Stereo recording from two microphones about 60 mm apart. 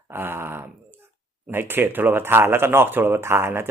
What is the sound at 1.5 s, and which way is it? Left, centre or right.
Speech, right.